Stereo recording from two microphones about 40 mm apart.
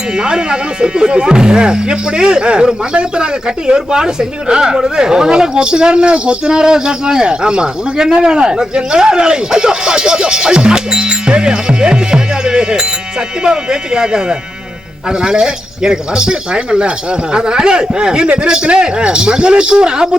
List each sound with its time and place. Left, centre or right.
0.2 s speech: centre